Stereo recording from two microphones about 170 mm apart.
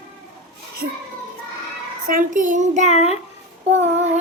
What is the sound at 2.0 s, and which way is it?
Speech, 50° right (ahead or behind).